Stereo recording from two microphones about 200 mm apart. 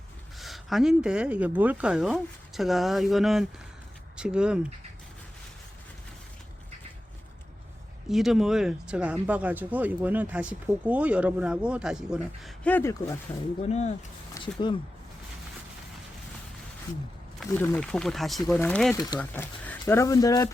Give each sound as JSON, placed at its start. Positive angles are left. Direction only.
{"t": 0.3, "sound": "speech", "side_deg": 0}
{"t": 8.1, "sound": "speech", "side_deg": 0}
{"t": 13.6, "sound": "speech", "side_deg": 35}
{"t": 14.4, "sound": "speech", "side_deg": 25}
{"t": 17.4, "sound": "speech", "side_deg": 5}